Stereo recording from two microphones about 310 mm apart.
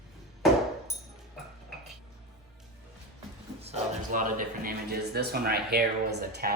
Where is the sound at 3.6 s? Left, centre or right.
Right.